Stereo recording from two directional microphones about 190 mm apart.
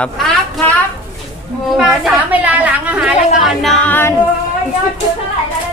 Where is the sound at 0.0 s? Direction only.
5° left (ahead or behind).